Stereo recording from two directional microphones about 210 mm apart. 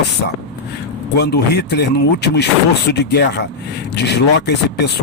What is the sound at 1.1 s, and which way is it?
Speech, 50° left (ahead or behind).